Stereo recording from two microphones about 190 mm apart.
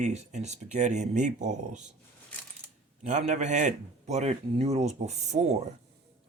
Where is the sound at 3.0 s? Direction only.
40° right (ahead or behind).